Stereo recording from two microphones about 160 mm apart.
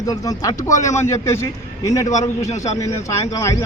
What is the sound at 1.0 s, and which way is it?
A man's voice, 15° left (ahead or behind).